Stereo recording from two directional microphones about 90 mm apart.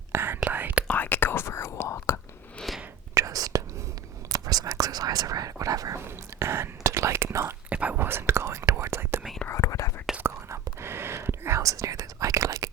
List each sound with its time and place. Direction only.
0.1 s whispering: 25° right (ahead or behind)
0.9 s whispering: 20° left (ahead or behind)
2.6 s a sound: centre (ahead or behind)
3.2 s whispering: 40° right (ahead or behind)
4.3 s speech: 40° right (ahead or behind)
6.0 s speech: 30° right (ahead or behind)
7.7 s whispering: 15° right (ahead or behind)
9.5 s whispering: 35° left (ahead or behind)
10.2 s whispering: 30° right (ahead or behind)